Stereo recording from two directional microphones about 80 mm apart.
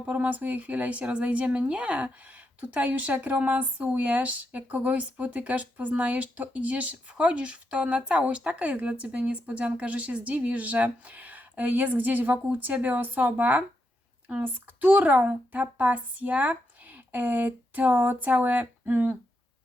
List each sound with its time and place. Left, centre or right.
0.1 s speech: centre